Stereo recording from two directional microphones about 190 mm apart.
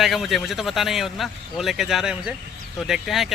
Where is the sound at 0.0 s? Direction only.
Centre (ahead or behind).